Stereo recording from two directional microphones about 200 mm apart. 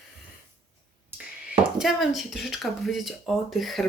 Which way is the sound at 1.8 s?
Centre (ahead or behind).